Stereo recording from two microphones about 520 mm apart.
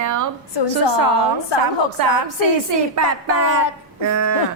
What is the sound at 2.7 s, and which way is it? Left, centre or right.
Livestock, right.